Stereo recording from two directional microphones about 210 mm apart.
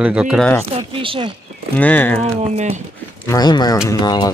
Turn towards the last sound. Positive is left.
turn(degrees=20)  # may be behind; listen again after turning